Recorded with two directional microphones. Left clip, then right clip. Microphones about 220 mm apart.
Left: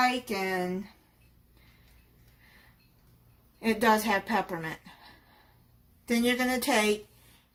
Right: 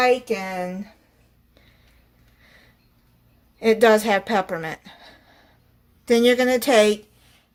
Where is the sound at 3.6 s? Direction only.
40° right (ahead or behind).